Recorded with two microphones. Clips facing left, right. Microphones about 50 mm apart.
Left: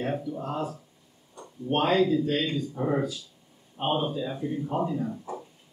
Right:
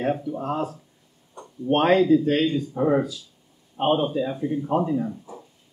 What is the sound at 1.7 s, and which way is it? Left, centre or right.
Speech, right.